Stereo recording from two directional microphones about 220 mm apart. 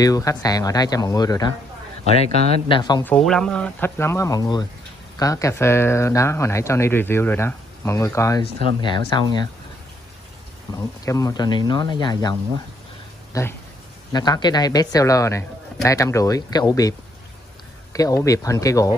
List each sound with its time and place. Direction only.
0.0 s speech: 15° left (ahead or behind)
2.7 s speech: 20° left (ahead or behind)
3.0 s speech: 5° left (ahead or behind)
10.7 s speech: 15° left (ahead or behind)
17.9 s speech: 15° left (ahead or behind)